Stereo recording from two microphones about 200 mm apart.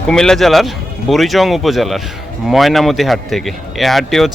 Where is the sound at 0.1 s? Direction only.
5° left (ahead or behind).